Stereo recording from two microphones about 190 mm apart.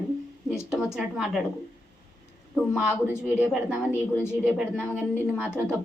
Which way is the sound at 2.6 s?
5° right (ahead or behind).